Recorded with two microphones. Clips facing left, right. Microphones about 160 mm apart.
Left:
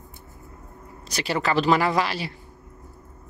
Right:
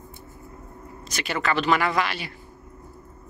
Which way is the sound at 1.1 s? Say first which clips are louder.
Left 2 dB; 35° left (ahead or behind).